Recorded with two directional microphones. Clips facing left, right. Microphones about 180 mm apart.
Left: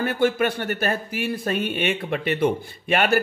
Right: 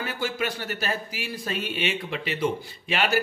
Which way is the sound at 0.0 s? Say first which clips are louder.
Left 8 dB; 55° left (ahead or behind).